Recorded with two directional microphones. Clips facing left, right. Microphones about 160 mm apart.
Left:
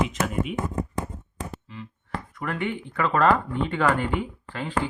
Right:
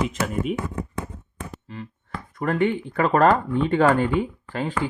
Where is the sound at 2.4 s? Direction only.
40° right (ahead or behind).